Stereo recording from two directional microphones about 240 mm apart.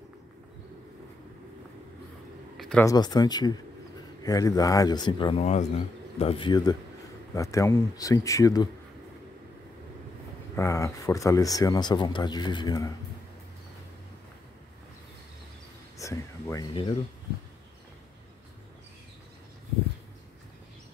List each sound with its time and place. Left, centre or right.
2.5 s a sound: centre
2.8 s speech: centre
10.5 s speech: centre
16.0 s speech: centre